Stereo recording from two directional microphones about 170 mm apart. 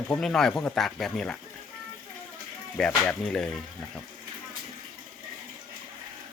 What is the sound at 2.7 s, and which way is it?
Speech, 5° left (ahead or behind).